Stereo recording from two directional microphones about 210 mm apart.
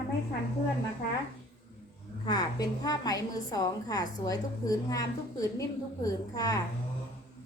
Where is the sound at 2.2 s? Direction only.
20° left (ahead or behind).